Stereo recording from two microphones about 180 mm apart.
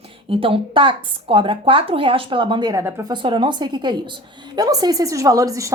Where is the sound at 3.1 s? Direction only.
30° right (ahead or behind).